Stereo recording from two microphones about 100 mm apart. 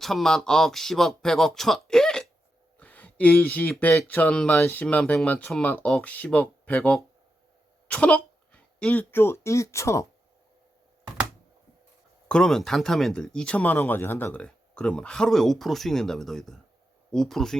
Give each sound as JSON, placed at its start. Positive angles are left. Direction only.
{"t": 0.0, "sound": "speech", "side_deg": 5}
{"t": 2.7, "sound": "a sound", "side_deg": 15}
{"t": 3.7, "sound": "speech", "side_deg": 15}
{"t": 12.3, "sound": "speech", "side_deg": 5}